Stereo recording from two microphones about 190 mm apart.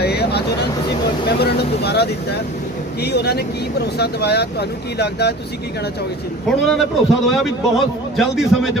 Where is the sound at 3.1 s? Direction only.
60° left (ahead or behind).